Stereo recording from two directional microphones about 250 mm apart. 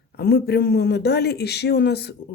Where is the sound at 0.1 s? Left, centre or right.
Left.